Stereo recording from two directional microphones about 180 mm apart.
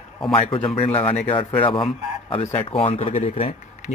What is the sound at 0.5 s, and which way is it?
Speech, 30° left (ahead or behind).